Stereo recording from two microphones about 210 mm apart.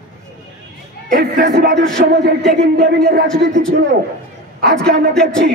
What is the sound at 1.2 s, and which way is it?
A man's voice, 50° right (ahead or behind).